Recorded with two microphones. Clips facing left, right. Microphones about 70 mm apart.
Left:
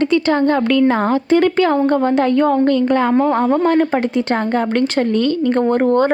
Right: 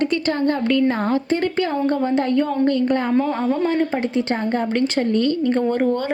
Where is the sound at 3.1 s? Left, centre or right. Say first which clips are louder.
Left 5 dB; left.